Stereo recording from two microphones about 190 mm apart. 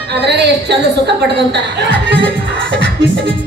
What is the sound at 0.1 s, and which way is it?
A woman's voice, 60° right (ahead or behind).